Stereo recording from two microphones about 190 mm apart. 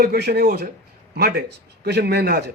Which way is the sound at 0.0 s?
55° right (ahead or behind).